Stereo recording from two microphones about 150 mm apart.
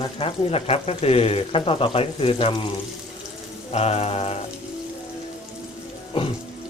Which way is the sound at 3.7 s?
45° left (ahead or behind).